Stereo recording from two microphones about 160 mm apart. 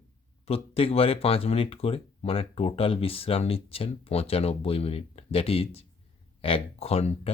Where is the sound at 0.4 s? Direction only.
40° left (ahead or behind).